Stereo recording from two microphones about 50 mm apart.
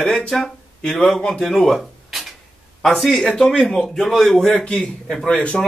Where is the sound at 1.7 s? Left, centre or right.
Centre.